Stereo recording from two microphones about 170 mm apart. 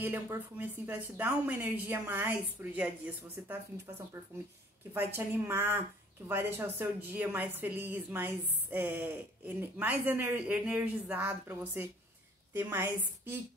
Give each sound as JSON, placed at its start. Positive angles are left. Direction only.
{"t": 0.0, "sound": "speech", "side_deg": -10}
{"t": 4.9, "sound": "speech", "side_deg": -15}